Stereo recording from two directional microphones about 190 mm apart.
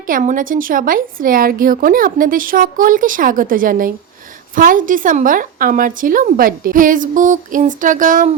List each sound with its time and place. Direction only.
0.1 s a woman's voice: 45° right (ahead or behind)